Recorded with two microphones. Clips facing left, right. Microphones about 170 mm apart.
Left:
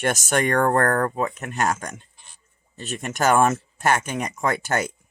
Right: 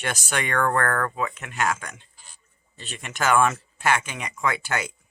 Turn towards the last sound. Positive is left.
turn(degrees=45)  # may be behind; listen again after turning